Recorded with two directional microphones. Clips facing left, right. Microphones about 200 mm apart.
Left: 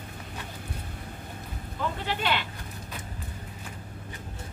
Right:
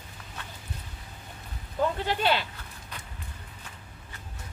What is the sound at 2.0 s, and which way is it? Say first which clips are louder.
Speech: right 3 dB; 40° right (ahead or behind).